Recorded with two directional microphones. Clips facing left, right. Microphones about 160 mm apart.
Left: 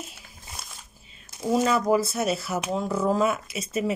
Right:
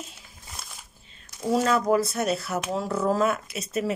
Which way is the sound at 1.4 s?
5° left (ahead or behind).